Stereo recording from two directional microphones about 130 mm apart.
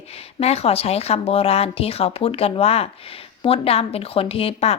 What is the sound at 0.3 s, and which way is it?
A woman's voice, 50° left (ahead or behind).